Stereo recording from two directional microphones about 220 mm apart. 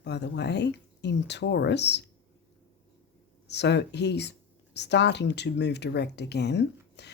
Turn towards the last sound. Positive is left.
turn(degrees=50)  # may be behind; listen again after turning